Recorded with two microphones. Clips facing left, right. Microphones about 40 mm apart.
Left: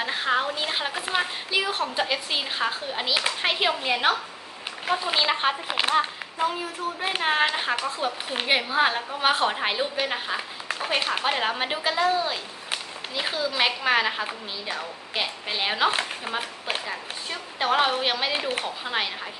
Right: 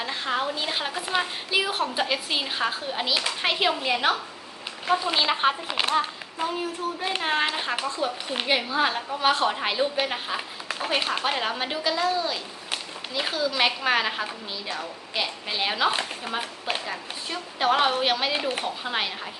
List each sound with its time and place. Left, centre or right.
0.0 s a woman's voice: left
1.5 s a woman's voice: centre
5.7 s a woman's voice: centre
7.9 s a woman's voice: left
13.1 s a woman's voice: centre